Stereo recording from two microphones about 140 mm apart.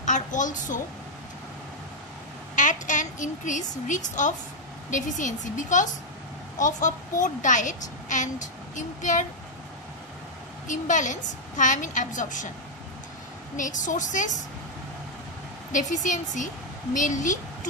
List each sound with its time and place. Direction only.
0.0 s a sound: 65° left (ahead or behind)
2.5 s a woman's voice: 65° left (ahead or behind)
10.7 s a woman's voice: 65° left (ahead or behind)
13.6 s a woman's voice: 65° left (ahead or behind)
15.7 s a woman's voice: 60° left (ahead or behind)